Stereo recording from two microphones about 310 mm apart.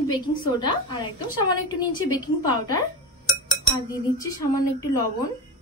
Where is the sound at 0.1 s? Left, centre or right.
Centre.